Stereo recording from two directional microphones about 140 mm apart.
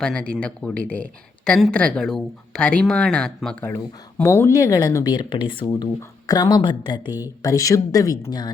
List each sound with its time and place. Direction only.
0.0 s speech: 5° left (ahead or behind); by 8.4 s 25° left (ahead or behind)